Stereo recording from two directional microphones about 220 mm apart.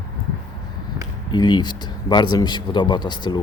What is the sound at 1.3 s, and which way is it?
Speech, 20° left (ahead or behind).